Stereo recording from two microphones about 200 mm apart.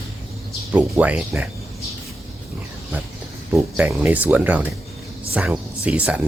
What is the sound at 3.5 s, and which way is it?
Speech, 5° right (ahead or behind).